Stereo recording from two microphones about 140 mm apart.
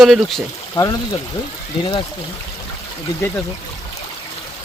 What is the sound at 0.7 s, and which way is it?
Speech, 25° left (ahead or behind).